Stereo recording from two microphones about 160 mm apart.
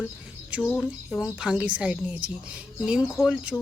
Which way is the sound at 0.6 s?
10° left (ahead or behind).